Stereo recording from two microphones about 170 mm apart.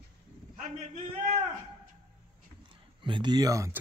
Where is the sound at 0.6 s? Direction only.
45° right (ahead or behind).